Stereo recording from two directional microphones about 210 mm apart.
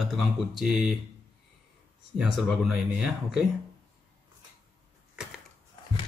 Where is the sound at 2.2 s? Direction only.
Centre (ahead or behind).